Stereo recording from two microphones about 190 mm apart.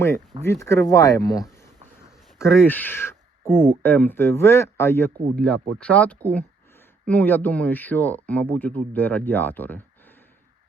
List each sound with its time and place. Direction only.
0.4 s speech: 15° left (ahead or behind)
1.8 s a sound: 35° right (ahead or behind)
2.6 s speech: 10° left (ahead or behind)